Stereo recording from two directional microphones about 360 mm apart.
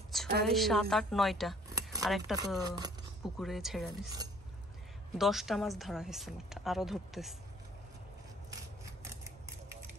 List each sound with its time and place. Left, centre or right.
0.1 s a sound: centre
0.5 s speech: centre
3.3 s a woman's voice: centre
5.1 s a woman's voice: centre